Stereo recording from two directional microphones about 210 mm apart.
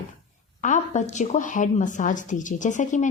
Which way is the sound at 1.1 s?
35° left (ahead or behind).